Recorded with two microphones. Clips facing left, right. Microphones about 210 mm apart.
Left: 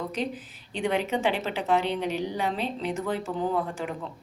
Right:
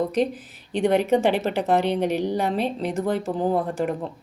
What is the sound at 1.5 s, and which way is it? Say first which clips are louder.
Speech: right 5 dB; 40° right (ahead or behind).